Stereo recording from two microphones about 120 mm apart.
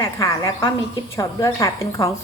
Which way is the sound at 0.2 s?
25° left (ahead or behind).